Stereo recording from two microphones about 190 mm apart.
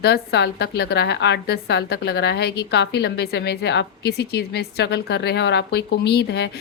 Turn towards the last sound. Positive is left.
turn(degrees=60)  # may be behind; listen again after turning